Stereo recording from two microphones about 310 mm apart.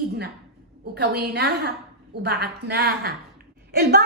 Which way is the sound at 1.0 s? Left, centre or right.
Right.